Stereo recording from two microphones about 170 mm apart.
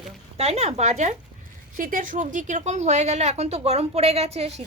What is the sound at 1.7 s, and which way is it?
A woman's voice, 55° right (ahead or behind).